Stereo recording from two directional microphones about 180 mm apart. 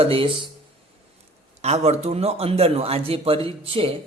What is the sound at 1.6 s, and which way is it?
A man's voice, 35° right (ahead or behind).